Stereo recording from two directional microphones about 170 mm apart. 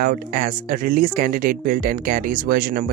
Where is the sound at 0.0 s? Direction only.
55° right (ahead or behind).